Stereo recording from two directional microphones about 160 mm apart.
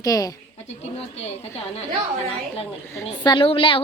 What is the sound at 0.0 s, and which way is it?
Speech, 20° left (ahead or behind).